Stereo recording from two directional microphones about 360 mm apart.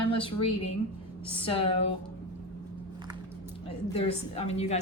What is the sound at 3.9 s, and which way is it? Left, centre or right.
Speech, centre.